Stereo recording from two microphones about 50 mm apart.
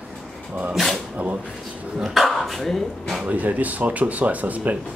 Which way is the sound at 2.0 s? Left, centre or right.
Centre.